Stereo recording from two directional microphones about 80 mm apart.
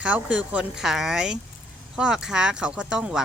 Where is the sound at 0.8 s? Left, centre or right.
Centre.